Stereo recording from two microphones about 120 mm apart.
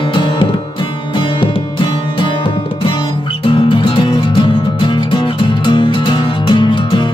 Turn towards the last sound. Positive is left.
turn(degrees=45)  # may be behind; listen again after turning